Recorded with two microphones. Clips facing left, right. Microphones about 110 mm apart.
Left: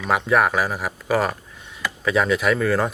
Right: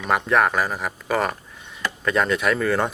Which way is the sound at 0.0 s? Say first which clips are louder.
Left 1 dB; centre (ahead or behind).